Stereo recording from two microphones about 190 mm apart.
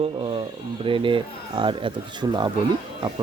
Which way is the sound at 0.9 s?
25° right (ahead or behind).